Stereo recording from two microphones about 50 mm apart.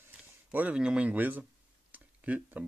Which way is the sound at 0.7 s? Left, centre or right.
Right.